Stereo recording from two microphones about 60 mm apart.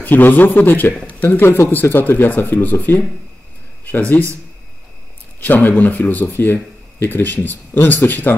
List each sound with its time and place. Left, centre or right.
0.0 s speech: left
1.4 s speech: left
5.4 s speech: left